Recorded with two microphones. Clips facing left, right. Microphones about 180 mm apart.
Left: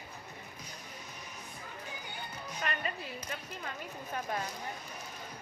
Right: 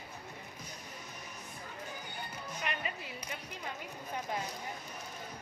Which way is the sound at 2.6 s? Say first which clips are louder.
Left 3 dB; 15° right (ahead or behind).